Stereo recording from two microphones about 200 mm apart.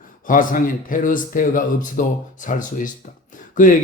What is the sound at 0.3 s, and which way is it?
A man's voice, 45° left (ahead or behind).